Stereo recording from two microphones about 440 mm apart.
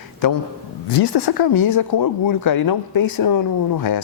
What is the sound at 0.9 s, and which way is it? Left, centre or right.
Speech, left.